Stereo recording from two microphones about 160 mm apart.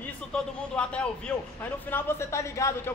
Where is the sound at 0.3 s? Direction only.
5° left (ahead or behind).